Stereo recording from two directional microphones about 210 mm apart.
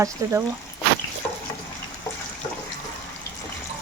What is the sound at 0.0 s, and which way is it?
Speech, 15° right (ahead or behind).